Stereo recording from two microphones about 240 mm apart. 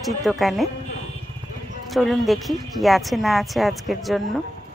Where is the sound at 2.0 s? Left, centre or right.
Centre.